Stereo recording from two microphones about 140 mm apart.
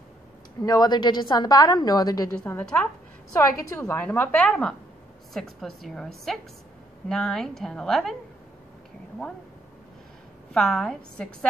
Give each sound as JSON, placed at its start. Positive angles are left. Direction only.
{"t": 0.6, "sound": "a woman's voice", "side_deg": 25}
{"t": 2.3, "sound": "a woman's voice", "side_deg": 10}
{"t": 10.5, "sound": "a woman's voice", "side_deg": 5}